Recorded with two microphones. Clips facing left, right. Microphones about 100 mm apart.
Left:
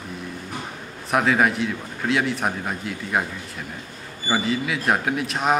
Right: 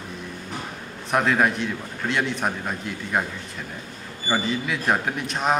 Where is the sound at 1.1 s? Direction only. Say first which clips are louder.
Left 1 dB; centre (ahead or behind).